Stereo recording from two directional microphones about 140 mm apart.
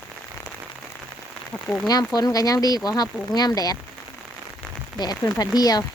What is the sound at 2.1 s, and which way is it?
Speech, 25° left (ahead or behind).